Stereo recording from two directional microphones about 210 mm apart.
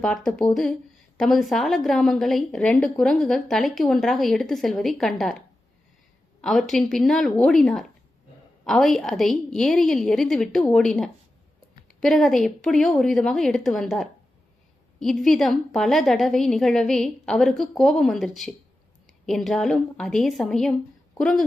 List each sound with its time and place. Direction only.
0.0 s a woman's voice: 5° left (ahead or behind)
6.4 s a woman's voice: centre (ahead or behind)